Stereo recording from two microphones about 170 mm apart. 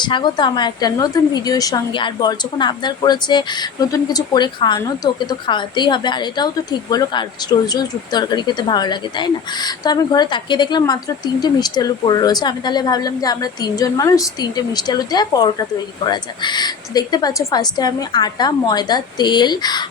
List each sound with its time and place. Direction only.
0.0 s a woman's voice: 25° left (ahead or behind)